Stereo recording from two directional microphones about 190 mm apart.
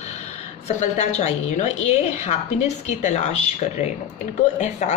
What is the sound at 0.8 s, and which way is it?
A woman's voice, 35° left (ahead or behind).